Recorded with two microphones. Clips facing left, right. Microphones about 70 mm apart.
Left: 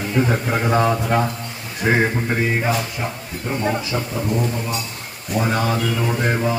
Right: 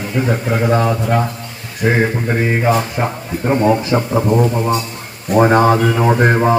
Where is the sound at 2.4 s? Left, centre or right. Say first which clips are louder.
Right 7 dB; right.